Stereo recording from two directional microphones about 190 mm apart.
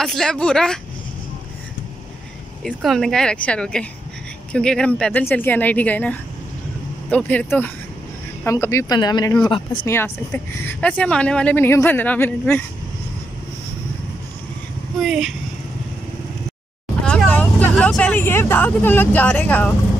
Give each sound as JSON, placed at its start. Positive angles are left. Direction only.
{"t": 0.0, "sound": "speech", "side_deg": 0}
{"t": 2.6, "sound": "speech", "side_deg": 0}
{"t": 9.8, "sound": "speech", "side_deg": 10}
{"t": 15.0, "sound": "speech", "side_deg": 0}
{"t": 17.0, "sound": "speech", "side_deg": 5}